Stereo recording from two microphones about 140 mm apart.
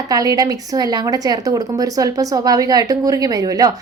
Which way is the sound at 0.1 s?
25° right (ahead or behind).